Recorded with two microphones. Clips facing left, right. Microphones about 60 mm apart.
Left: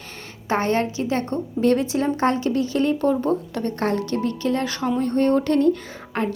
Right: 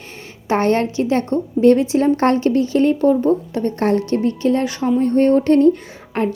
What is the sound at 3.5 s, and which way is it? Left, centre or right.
A woman's voice, right.